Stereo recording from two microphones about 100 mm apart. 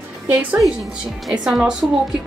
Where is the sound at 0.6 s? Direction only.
Centre (ahead or behind).